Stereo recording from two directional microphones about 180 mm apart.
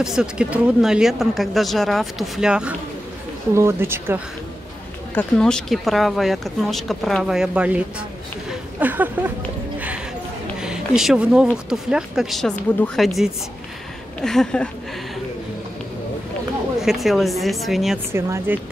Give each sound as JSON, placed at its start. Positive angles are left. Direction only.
{"t": 0.0, "sound": "speech", "side_deg": -5}
{"t": 5.1, "sound": "speech", "side_deg": 5}
{"t": 9.8, "sound": "a sound", "side_deg": -10}
{"t": 10.6, "sound": "speech", "side_deg": -5}
{"t": 16.8, "sound": "speech", "side_deg": 0}
{"t": 18.1, "sound": "speech", "side_deg": -15}